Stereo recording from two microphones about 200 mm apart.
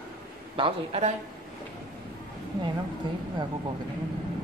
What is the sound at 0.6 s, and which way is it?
Speech, 30° right (ahead or behind).